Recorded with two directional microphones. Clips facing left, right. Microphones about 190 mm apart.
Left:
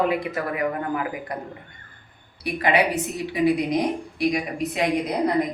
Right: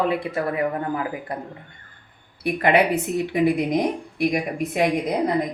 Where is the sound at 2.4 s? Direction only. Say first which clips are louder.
Right 3 dB; 55° right (ahead or behind).